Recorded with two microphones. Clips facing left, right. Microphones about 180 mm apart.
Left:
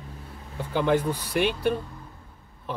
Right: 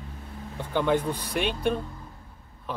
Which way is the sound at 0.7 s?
10° left (ahead or behind).